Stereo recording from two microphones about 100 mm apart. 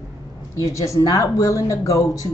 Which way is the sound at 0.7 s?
35° left (ahead or behind).